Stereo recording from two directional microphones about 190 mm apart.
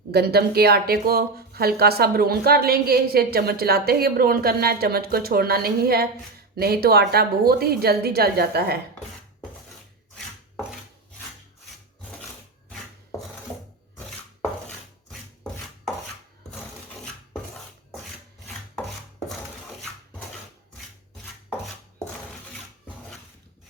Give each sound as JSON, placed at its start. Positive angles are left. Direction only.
{"t": 0.1, "sound": "speech", "side_deg": -60}
{"t": 12.6, "sound": "chopping", "side_deg": 10}
{"t": 15.1, "sound": "rub", "side_deg": 0}